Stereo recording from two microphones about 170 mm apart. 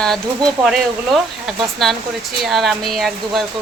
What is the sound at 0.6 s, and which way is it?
Speech, centre (ahead or behind).